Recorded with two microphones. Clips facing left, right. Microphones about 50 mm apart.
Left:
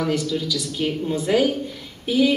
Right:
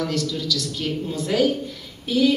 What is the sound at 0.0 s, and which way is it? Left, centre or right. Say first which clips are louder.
A woman's voice: left 2 dB; centre.